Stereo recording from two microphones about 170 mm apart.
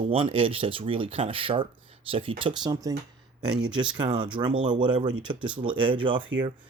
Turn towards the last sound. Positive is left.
turn(degrees=-30)  # may be behind; listen again after turning